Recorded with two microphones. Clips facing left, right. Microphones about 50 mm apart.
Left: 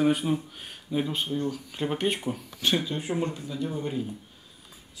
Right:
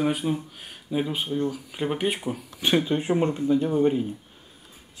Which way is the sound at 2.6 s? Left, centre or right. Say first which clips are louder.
Right 5 dB; right.